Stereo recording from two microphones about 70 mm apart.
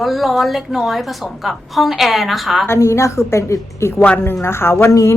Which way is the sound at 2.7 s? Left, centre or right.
Left.